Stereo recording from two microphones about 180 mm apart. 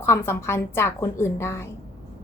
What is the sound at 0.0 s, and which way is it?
A woman's voice, 15° left (ahead or behind).